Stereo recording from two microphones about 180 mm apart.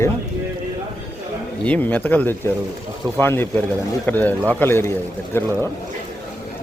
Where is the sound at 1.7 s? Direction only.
10° left (ahead or behind).